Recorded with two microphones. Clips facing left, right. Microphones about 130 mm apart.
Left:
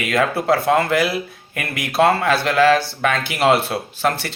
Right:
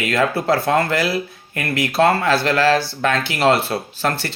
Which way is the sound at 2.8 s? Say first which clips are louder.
Right 1 dB; 15° left (ahead or behind).